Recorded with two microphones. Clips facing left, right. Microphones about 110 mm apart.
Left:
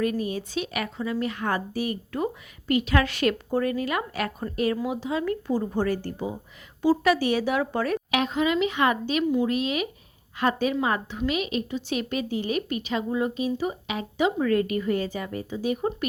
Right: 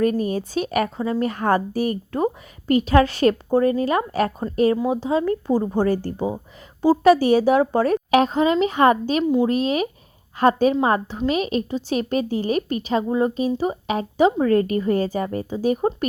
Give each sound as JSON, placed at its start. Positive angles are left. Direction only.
{"t": 0.0, "sound": "a woman's voice", "side_deg": -40}